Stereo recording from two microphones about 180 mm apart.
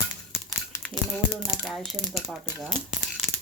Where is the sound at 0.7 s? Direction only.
15° left (ahead or behind).